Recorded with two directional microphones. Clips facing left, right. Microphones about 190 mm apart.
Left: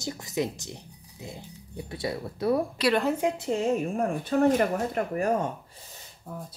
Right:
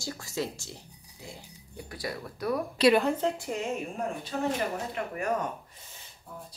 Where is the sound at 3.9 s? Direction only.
55° left (ahead or behind).